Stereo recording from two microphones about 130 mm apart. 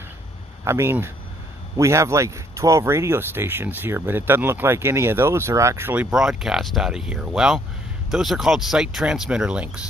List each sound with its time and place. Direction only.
0.7 s speech: 20° right (ahead or behind)